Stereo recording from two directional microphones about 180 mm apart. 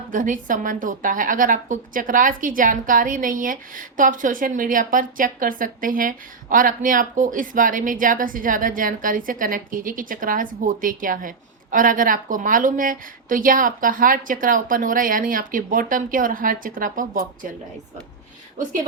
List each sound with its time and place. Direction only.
0.1 s a woman's voice: 50° right (ahead or behind)